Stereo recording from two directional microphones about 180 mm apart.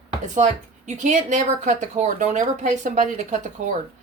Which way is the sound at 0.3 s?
40° right (ahead or behind).